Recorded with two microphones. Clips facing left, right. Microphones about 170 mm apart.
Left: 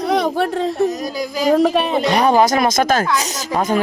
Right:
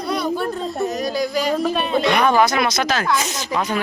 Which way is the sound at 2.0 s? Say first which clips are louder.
Left 2 dB; 40° left (ahead or behind).